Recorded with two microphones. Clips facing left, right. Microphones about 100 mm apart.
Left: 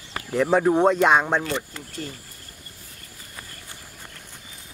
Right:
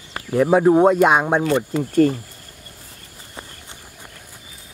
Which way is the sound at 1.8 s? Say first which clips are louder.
Right 19 dB; 60° right (ahead or behind).